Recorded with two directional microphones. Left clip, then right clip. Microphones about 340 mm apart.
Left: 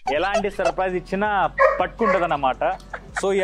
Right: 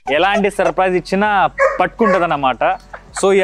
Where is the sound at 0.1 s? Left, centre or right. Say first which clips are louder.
Right 7 dB; right.